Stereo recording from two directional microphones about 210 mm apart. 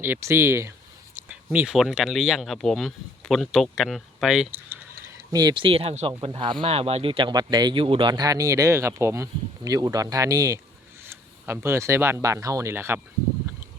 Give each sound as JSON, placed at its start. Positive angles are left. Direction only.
{"t": 0.0, "sound": "speech", "side_deg": -10}